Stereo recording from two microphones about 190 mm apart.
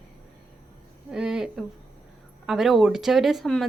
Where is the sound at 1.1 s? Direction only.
5° right (ahead or behind).